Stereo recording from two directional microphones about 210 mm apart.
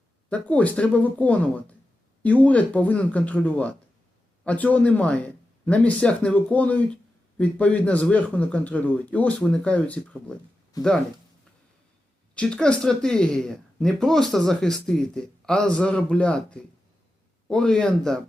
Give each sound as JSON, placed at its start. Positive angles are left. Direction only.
{"t": 0.3, "sound": "a man's voice", "side_deg": 5}
{"t": 10.7, "sound": "a man's voice", "side_deg": 15}
{"t": 12.3, "sound": "speech", "side_deg": 5}